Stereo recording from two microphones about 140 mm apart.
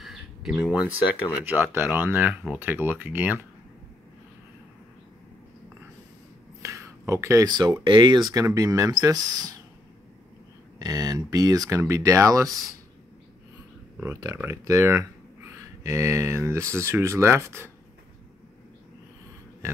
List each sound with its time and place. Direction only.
0.0 s a sound: centre (ahead or behind)
1.4 s speech: 15° right (ahead or behind)
6.6 s speech: 20° right (ahead or behind)
10.8 s speech: 25° right (ahead or behind)
14.0 s speech: 20° right (ahead or behind)